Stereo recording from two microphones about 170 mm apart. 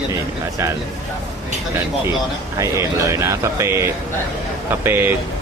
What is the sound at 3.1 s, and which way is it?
Speech, 15° right (ahead or behind).